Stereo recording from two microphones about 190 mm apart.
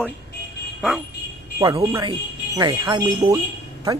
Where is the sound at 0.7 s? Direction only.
5° right (ahead or behind).